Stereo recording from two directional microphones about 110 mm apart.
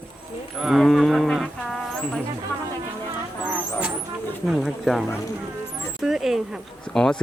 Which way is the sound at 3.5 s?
15° right (ahead or behind).